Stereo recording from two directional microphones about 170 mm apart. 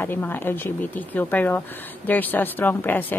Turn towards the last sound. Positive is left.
turn(degrees=10)  # may be behind; listen again after turning